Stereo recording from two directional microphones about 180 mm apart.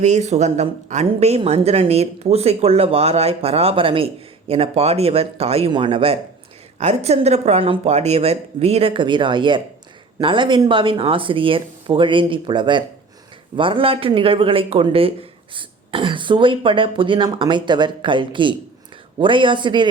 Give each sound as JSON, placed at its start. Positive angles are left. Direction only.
{"t": 0.0, "sound": "a woman's voice", "side_deg": -40}